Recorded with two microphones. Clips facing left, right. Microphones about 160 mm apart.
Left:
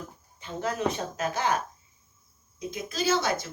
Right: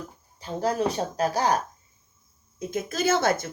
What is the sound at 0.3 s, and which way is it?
Speech, 35° right (ahead or behind).